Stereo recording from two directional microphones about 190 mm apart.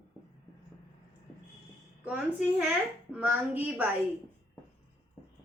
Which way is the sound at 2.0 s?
5° right (ahead or behind).